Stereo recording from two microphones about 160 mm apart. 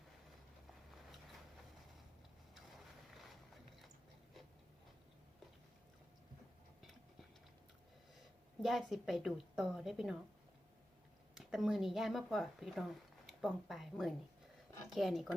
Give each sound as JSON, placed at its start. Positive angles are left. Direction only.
{"t": 2.6, "sound": "boat", "side_deg": 0}
{"t": 8.6, "sound": "a woman's voice", "side_deg": 0}
{"t": 11.3, "sound": "a woman's voice", "side_deg": -5}